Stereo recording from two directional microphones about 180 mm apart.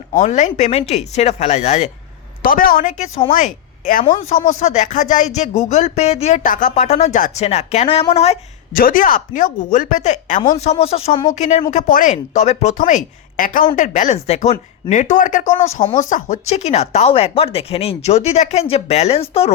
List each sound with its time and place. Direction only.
0.1 s speech: 45° left (ahead or behind)
2.4 s a woman's voice: 50° left (ahead or behind); by 8.4 s 35° left (ahead or behind)
8.7 s a woman's voice: 50° left (ahead or behind); by 11.3 s 25° left (ahead or behind)
11.3 s a woman's voice: 40° left (ahead or behind)